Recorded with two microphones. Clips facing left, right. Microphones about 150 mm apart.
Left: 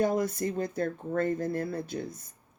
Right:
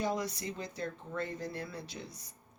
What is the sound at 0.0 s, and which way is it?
Speech, 50° left (ahead or behind).